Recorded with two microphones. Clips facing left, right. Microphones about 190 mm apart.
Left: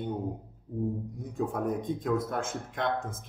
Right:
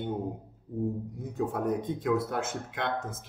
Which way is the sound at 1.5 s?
5° right (ahead or behind).